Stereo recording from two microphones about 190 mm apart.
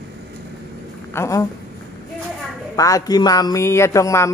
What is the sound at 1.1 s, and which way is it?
Speech, 15° left (ahead or behind).